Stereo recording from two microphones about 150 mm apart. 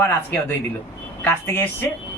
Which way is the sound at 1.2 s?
15° left (ahead or behind).